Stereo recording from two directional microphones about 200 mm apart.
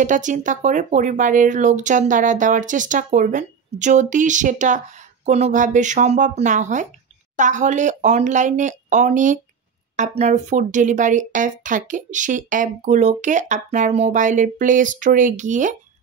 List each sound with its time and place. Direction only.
0.0 s speech: 40° right (ahead or behind)